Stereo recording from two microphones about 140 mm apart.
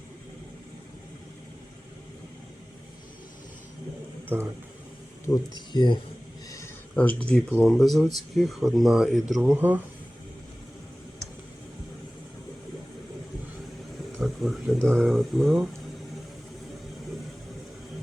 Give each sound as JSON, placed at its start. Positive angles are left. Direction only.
{"t": 4.3, "sound": "speech", "side_deg": -15}
{"t": 5.3, "sound": "speech", "side_deg": 30}
{"t": 6.9, "sound": "speech", "side_deg": 10}
{"t": 9.6, "sound": "speech", "side_deg": -10}
{"t": 14.2, "sound": "speech", "side_deg": 0}